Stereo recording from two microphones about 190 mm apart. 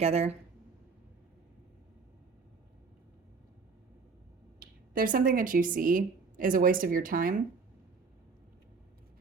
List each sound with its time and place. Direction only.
0.0 s speech: 35° right (ahead or behind)
4.6 s speech: 50° right (ahead or behind)